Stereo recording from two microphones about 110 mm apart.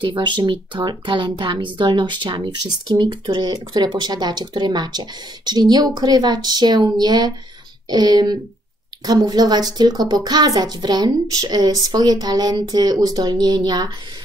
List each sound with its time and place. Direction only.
0.0 s a woman's voice: 45° right (ahead or behind)